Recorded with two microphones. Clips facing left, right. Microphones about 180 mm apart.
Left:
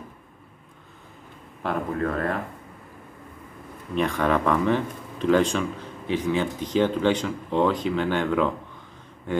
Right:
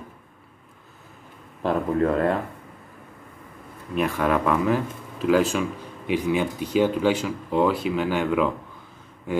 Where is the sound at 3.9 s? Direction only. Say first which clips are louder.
Even; 5° right (ahead or behind).